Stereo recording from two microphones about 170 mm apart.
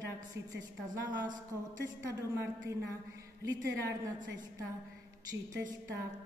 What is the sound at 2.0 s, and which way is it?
Speech, 20° right (ahead or behind).